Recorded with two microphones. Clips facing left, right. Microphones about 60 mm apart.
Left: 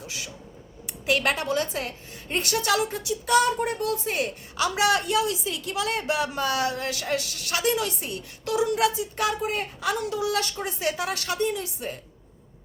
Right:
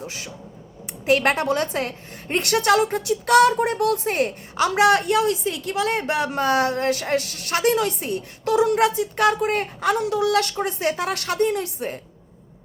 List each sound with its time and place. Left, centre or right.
0.0 s a sound: right
1.0 s a woman's voice: right
8.6 s speech: right
10.0 s a woman's voice: right